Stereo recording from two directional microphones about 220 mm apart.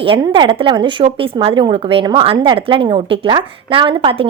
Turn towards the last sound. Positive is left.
turn(degrees=-25)  # may be behind; listen again after turning